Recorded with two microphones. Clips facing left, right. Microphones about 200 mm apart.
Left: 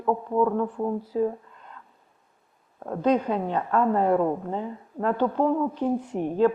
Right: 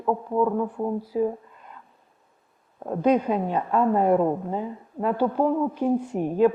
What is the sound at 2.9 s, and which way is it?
A woman's voice, 10° right (ahead or behind).